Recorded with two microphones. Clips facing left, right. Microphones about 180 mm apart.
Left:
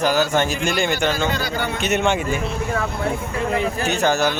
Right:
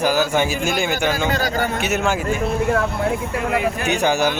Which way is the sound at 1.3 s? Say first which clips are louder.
Right 3 dB; 40° right (ahead or behind).